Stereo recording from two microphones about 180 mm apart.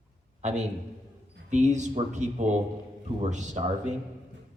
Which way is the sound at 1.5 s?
40° right (ahead or behind).